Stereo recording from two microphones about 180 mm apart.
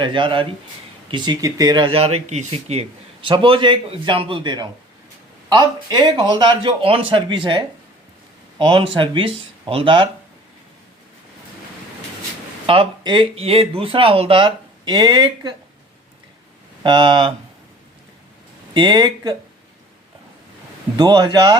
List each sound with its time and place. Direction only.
0.0 s speech: 25° right (ahead or behind)
12.6 s speech: 30° right (ahead or behind)
16.8 s speech: 25° right (ahead or behind)
18.7 s speech: 25° right (ahead or behind)
20.9 s speech: 25° right (ahead or behind)